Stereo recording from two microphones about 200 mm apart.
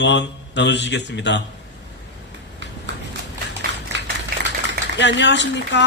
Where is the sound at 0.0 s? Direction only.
60° left (ahead or behind).